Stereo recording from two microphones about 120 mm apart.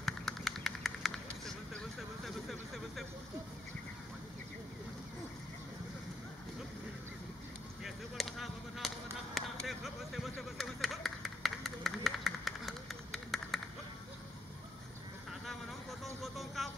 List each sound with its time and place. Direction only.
0.0 s vehicle: centre (ahead or behind)
7.8 s a sound: centre (ahead or behind)
16.2 s vehicle: centre (ahead or behind)